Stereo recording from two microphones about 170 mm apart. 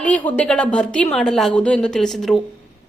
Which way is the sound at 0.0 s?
10° left (ahead or behind).